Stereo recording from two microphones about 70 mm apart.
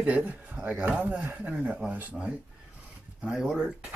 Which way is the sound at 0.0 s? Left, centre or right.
Centre.